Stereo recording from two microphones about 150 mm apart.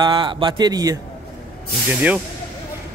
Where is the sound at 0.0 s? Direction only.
30° right (ahead or behind).